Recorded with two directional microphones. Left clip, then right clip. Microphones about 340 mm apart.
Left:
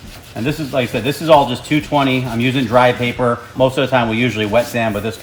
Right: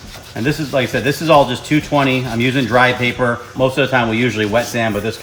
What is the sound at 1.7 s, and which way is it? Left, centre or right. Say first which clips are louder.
Speech: even; centre.